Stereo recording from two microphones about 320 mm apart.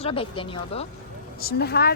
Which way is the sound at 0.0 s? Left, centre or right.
Centre.